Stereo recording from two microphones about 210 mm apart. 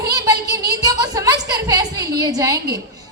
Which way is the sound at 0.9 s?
15° right (ahead or behind).